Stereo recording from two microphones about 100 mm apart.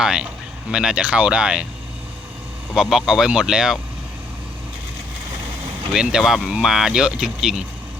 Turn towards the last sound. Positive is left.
turn(degrees=-5)  # may be behind; listen again after turning